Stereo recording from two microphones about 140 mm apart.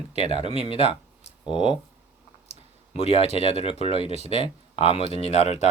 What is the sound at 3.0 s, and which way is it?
Speech, 50° left (ahead or behind).